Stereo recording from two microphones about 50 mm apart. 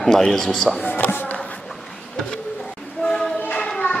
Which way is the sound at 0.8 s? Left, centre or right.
Left.